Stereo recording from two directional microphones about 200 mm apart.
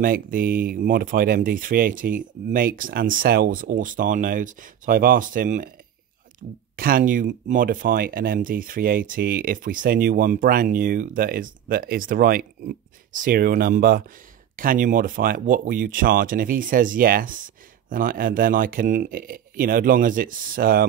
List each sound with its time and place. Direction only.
0.0 s speech: 45° right (ahead or behind)